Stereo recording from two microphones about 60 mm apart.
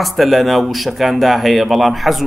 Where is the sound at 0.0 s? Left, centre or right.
Centre.